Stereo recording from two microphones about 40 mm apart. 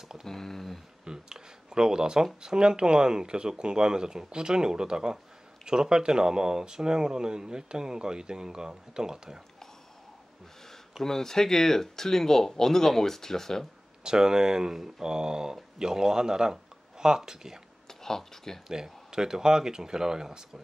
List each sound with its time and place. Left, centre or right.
0.2 s speech: centre
1.0 s a sound: centre
2.4 s speech: centre
11.0 s speech: centre
14.0 s speech: centre
17.8 s speech: centre
18.7 s speech: centre